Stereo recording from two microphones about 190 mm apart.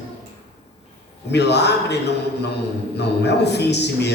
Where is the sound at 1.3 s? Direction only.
65° left (ahead or behind).